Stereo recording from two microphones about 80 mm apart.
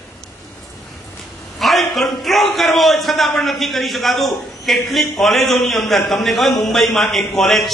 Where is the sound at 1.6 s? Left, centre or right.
Centre.